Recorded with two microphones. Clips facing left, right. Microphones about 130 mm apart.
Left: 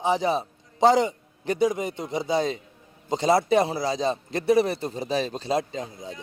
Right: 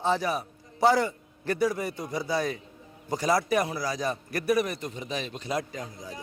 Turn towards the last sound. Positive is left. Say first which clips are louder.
# left 4 dB
turn(degrees=25)  # may be behind; listen again after turning